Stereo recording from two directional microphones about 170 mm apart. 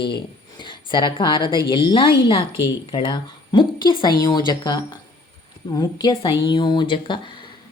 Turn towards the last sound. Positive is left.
turn(degrees=30)  # may be behind; listen again after turning